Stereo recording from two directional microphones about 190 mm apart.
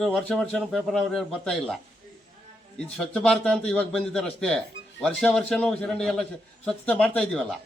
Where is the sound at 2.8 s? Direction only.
5° left (ahead or behind).